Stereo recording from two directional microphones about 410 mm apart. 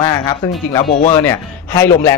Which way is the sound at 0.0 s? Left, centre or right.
Centre.